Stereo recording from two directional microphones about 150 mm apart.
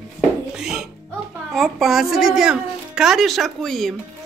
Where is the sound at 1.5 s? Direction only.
Centre (ahead or behind).